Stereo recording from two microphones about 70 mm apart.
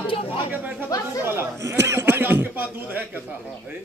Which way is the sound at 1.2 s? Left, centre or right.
Right.